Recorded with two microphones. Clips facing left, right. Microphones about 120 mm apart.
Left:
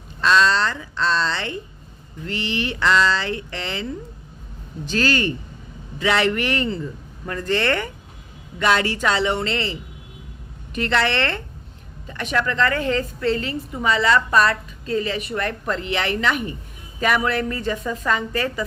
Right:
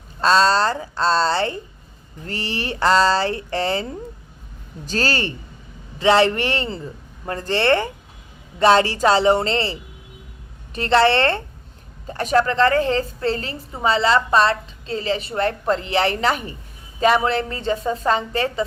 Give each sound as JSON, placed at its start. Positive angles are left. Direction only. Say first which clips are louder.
{"t": 0.2, "sound": "a woman's voice", "louder": "right 2 dB", "side_deg": -35}
{"t": 10.8, "sound": "a woman's voice", "louder": "right 5 dB", "side_deg": -30}